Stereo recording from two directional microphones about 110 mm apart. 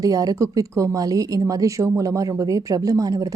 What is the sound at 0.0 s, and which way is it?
Speech, 35° right (ahead or behind).